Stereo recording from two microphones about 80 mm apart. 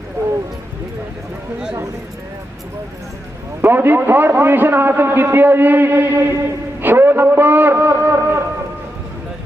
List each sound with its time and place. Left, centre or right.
3.6 s a man's voice: right
6.8 s a sound: right
7.9 s shofar: right